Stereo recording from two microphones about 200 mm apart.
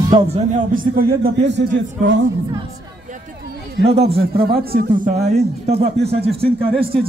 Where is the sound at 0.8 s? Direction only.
45° right (ahead or behind).